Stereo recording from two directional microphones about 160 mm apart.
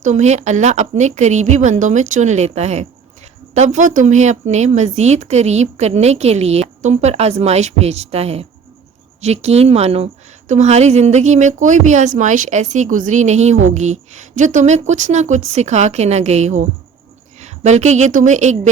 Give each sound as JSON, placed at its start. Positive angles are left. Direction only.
{"t": 0.0, "sound": "a woman's voice", "side_deg": -50}